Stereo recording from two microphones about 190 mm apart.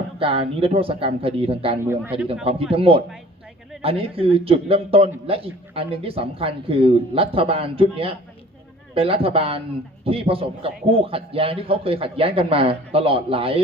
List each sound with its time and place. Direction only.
0.2 s a man's voice: 30° right (ahead or behind)
1.9 s a man's voice: 10° right (ahead or behind)
2.2 s a man's voice: 30° right (ahead or behind)